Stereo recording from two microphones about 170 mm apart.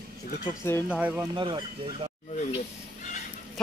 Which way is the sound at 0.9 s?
10° right (ahead or behind).